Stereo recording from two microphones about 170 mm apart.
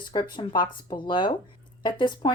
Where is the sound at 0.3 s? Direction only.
25° left (ahead or behind).